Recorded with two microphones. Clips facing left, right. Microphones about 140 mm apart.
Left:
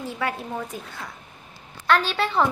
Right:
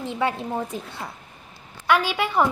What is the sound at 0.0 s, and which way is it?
Speech, 25° right (ahead or behind).